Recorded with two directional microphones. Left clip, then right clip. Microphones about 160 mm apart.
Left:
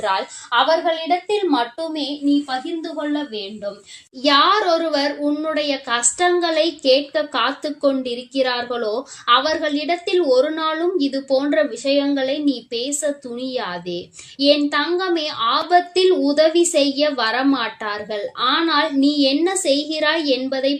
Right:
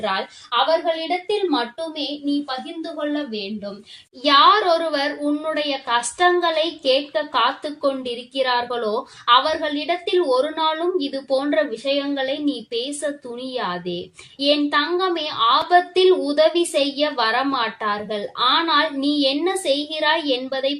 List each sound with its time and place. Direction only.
0.0 s a woman's voice: 35° left (ahead or behind)
3.1 s a woman's voice: 40° left (ahead or behind)